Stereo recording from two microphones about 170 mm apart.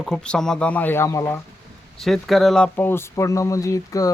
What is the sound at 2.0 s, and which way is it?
Speech, centre (ahead or behind).